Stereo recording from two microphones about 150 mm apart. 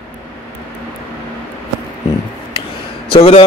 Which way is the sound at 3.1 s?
40° left (ahead or behind).